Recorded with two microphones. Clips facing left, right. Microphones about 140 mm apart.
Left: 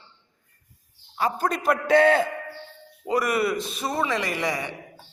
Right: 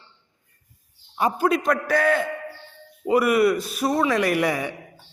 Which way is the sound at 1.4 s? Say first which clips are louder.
Right 3 dB; centre (ahead or behind).